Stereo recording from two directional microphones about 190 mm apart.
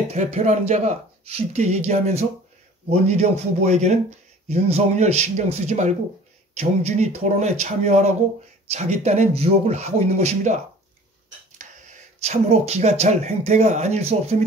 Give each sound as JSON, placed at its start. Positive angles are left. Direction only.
{"t": 0.1, "sound": "speech", "side_deg": -35}